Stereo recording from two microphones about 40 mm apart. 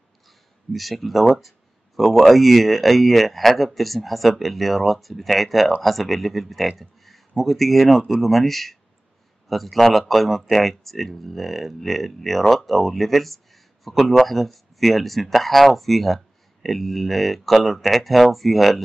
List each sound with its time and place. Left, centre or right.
0.7 s speech: centre